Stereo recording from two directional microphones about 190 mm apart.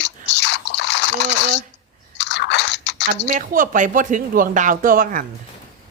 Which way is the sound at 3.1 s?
45° right (ahead or behind).